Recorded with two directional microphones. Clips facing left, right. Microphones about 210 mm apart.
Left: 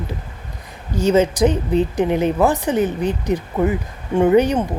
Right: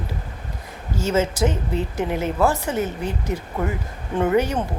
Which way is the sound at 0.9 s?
15° left (ahead or behind).